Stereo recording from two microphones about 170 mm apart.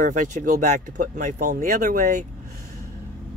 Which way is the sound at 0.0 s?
50° right (ahead or behind).